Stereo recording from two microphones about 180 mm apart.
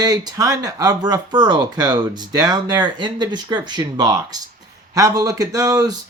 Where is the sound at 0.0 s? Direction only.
20° right (ahead or behind).